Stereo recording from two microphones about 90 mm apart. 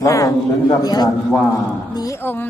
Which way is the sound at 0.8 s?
45° left (ahead or behind).